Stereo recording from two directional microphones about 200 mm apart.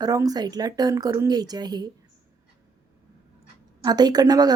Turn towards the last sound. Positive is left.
turn(degrees=-20)  # may be behind; listen again after turning